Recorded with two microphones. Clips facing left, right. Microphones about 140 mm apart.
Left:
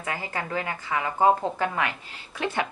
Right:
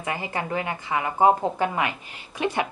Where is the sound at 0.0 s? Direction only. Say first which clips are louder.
Right 3 dB; 20° right (ahead or behind).